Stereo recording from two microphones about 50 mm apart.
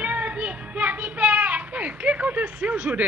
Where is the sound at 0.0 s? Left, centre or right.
Right.